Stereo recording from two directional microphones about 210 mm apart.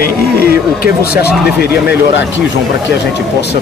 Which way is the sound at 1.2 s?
50° left (ahead or behind).